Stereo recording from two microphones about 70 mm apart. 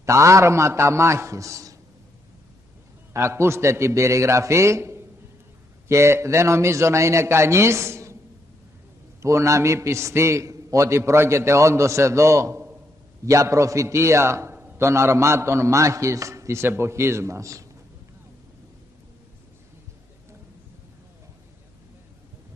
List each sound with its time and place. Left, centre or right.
0.0 s a man's voice: right
3.1 s a man's voice: right
9.2 s a man's voice: right